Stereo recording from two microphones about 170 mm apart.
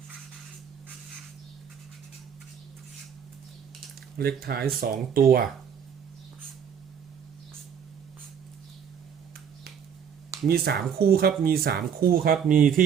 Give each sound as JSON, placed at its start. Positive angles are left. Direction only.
{"t": 4.2, "sound": "speech", "side_deg": -65}
{"t": 10.4, "sound": "speech", "side_deg": -65}